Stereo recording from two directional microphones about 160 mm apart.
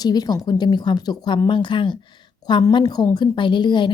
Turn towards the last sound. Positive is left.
turn(degrees=30)  # may be behind; listen again after turning